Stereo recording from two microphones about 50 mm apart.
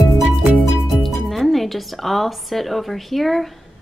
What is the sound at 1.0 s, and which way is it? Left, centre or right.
A woman's voice, centre.